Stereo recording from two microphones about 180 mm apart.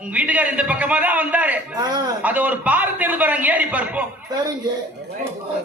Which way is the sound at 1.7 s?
25° right (ahead or behind).